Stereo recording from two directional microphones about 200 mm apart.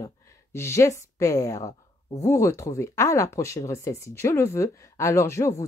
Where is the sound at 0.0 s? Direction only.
15° left (ahead or behind).